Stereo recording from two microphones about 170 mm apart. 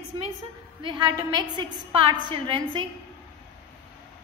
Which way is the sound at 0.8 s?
25° right (ahead or behind).